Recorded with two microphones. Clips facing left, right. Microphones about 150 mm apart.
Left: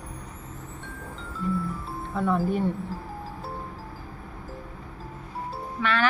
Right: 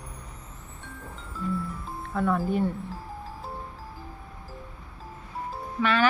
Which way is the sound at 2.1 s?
Centre (ahead or behind).